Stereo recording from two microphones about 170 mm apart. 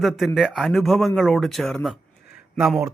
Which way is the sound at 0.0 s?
Centre (ahead or behind).